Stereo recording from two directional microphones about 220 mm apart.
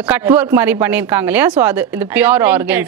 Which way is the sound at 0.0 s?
10° right (ahead or behind).